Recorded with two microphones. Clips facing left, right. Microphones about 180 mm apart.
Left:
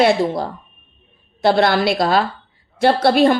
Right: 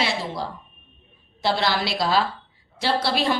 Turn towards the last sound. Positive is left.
turn(degrees=55)  # may be behind; listen again after turning